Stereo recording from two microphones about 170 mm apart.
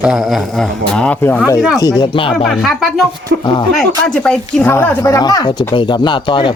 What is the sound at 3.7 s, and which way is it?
Speech, 5° left (ahead or behind).